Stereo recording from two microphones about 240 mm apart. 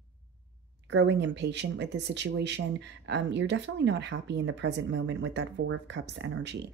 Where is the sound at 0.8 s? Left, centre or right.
Right.